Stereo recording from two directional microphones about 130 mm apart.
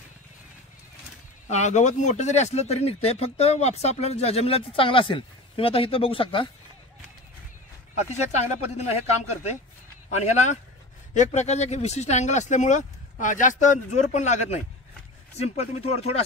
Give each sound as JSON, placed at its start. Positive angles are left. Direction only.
{"t": 1.5, "sound": "speech", "side_deg": 65}
{"t": 8.1, "sound": "speech", "side_deg": 60}
{"t": 10.0, "sound": "speech", "side_deg": 60}